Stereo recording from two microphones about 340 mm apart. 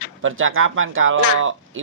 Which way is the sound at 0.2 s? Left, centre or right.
Right.